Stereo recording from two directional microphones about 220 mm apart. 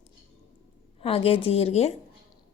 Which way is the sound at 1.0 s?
25° left (ahead or behind).